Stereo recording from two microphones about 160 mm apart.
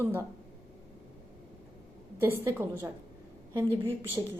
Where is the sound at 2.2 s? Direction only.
15° right (ahead or behind).